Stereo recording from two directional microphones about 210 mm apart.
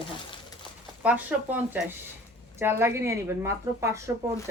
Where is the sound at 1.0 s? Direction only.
5° right (ahead or behind).